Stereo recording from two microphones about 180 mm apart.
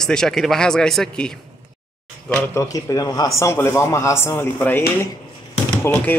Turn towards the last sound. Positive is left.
turn(degrees=15)  # may be behind; listen again after turning